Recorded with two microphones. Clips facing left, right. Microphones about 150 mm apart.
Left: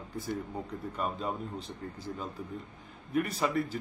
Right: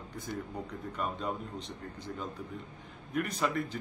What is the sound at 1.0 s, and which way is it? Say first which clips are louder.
Speech: left 1 dB; 5° left (ahead or behind).